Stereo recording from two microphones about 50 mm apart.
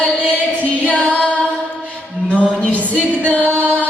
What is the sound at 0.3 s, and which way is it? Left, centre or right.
Female singing, left.